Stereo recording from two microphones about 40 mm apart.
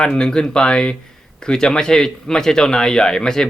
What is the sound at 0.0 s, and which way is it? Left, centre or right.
Speech, centre.